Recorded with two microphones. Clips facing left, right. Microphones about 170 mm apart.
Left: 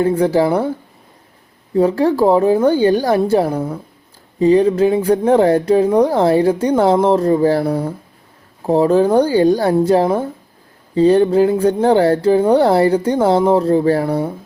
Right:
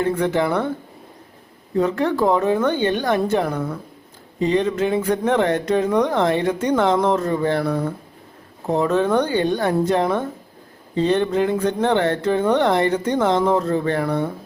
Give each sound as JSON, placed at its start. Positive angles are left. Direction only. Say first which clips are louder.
{"t": 0.0, "sound": "speech", "louder": "left 6 dB", "side_deg": 35}
{"t": 1.7, "sound": "speech", "louder": "left 6 dB", "side_deg": 30}